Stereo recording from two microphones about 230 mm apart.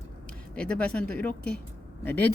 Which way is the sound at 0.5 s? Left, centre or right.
Centre.